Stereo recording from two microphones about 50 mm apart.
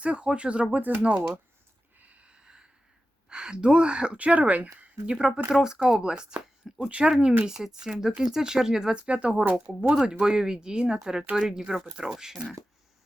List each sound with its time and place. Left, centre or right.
0.0 s speech: right
2.0 s a sound: right
3.2 s speech: centre
5.0 s speech: centre
9.9 s speech: centre